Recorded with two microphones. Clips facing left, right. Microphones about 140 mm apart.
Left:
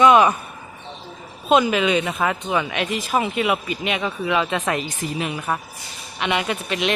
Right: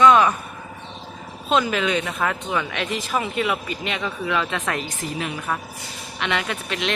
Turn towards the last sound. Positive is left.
turn(degrees=10)  # may be behind; listen again after turning